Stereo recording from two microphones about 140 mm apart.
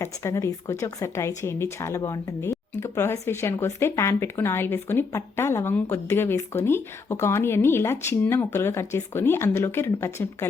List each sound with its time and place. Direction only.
0.0 s speech: 20° left (ahead or behind)